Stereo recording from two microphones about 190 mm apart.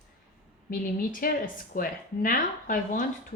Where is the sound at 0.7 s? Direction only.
45° left (ahead or behind).